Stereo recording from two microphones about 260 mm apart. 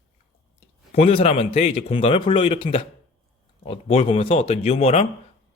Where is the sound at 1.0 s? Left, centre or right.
Left.